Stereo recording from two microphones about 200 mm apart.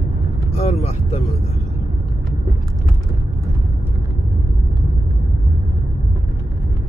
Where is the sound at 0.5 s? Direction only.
30° left (ahead or behind).